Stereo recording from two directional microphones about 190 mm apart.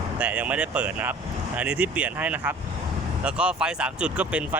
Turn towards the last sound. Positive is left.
turn(degrees=-5)  # may be behind; listen again after turning